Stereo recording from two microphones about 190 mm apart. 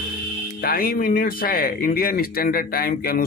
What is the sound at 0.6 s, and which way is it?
Speech, 50° left (ahead or behind).